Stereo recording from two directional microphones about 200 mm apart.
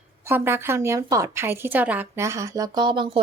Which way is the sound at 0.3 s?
10° right (ahead or behind).